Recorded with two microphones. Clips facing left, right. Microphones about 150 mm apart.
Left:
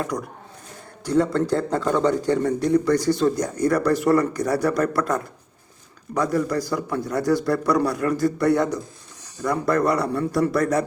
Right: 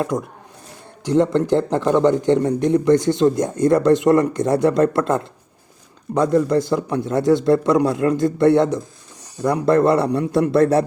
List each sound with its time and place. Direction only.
0.0 s speech: 25° right (ahead or behind)